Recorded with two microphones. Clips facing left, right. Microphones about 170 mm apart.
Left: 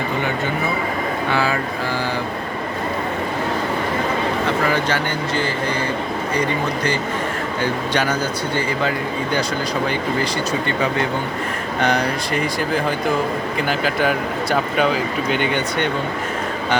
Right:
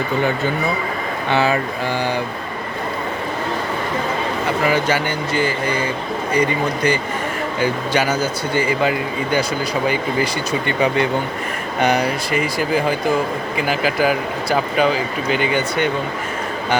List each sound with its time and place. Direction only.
1.3 s speech: 20° right (ahead or behind)
4.4 s speech: 10° right (ahead or behind)
7.6 s speech: 10° right (ahead or behind)
11.8 s speech: 10° right (ahead or behind)